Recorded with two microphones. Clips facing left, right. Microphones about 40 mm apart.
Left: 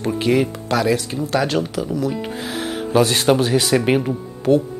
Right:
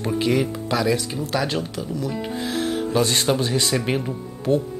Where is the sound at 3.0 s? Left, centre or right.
Centre.